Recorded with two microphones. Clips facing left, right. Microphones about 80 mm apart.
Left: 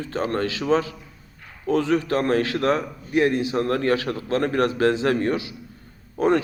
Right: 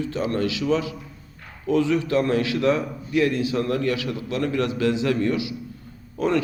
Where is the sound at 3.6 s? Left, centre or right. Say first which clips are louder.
Left 2 dB; left.